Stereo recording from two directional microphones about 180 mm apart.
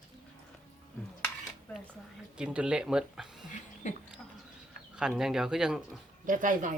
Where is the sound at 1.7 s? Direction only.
10° left (ahead or behind).